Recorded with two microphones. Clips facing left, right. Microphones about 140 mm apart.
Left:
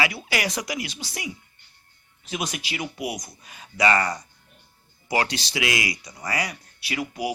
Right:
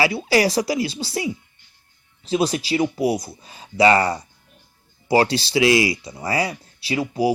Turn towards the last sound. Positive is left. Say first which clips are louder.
# right 7 dB
turn(degrees=-30)  # may be behind; listen again after turning